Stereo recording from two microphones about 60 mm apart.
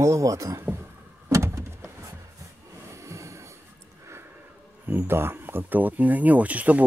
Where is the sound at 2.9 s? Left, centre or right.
Right.